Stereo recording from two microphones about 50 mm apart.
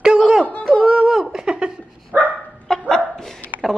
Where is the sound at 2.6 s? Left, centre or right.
Centre.